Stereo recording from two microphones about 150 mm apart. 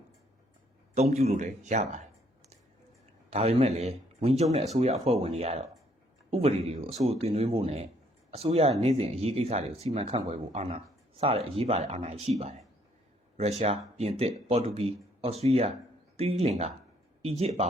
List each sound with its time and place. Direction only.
0.9 s speech: 45° right (ahead or behind)
3.2 s speech: 45° right (ahead or behind)